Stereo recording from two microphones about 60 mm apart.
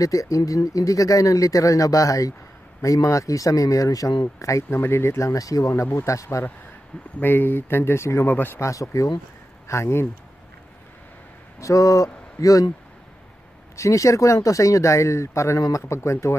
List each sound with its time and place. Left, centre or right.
0.0 s speech: left
4.6 s speech: left
5.3 s speech: left
6.0 s speech: left
7.2 s speech: left
9.7 s speech: left
11.6 s speech: left
13.7 s speech: left